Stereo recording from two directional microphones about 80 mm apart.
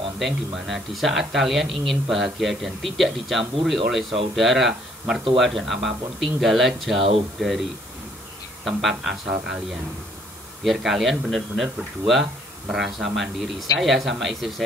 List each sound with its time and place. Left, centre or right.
0.2 s speech: centre
8.6 s speech: centre
10.6 s speech: centre